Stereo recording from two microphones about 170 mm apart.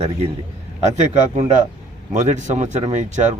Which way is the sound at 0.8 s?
40° right (ahead or behind).